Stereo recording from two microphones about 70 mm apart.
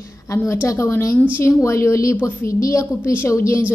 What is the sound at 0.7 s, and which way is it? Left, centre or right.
A woman's voice, left.